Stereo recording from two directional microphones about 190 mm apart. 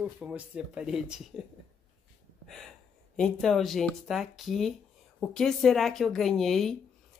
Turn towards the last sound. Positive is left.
turn(degrees=0)  # may be behind; listen again after turning